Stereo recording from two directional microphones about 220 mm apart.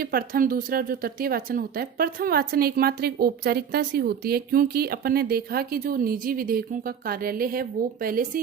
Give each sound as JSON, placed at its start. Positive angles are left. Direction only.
{"t": 0.0, "sound": "speech", "side_deg": -40}